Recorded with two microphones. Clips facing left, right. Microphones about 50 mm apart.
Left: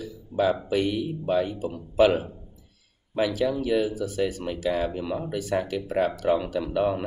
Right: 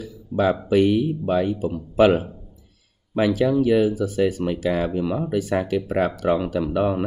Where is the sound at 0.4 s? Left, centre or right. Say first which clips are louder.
Right 5 dB; right.